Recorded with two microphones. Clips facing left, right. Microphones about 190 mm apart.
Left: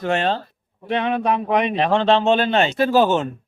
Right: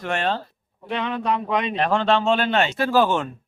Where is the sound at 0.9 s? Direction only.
20° left (ahead or behind).